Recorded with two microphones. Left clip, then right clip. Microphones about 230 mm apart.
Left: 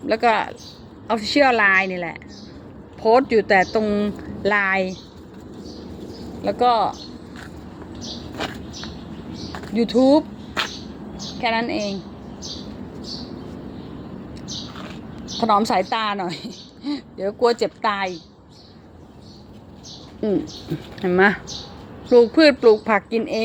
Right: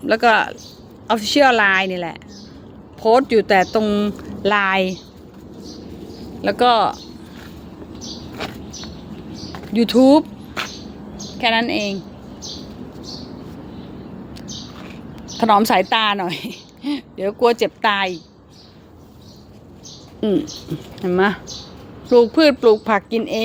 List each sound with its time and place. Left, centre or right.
0.1 s speech: centre
6.4 s a woman's voice: right
8.4 s a sound: centre
9.7 s a woman's voice: right
11.3 s a woman's voice: centre
15.4 s a woman's voice: right
16.4 s speech: centre
17.2 s a woman's voice: centre
21.0 s speech: centre